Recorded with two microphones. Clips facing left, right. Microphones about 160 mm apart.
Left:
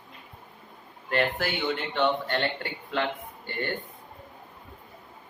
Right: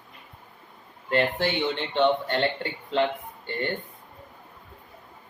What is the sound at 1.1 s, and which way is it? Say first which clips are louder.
Speech: right 3 dB; 25° right (ahead or behind).